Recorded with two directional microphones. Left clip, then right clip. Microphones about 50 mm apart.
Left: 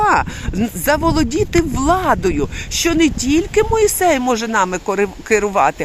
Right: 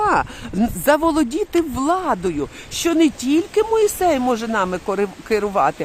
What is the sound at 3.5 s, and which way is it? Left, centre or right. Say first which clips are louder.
Speech: left 3 dB; centre.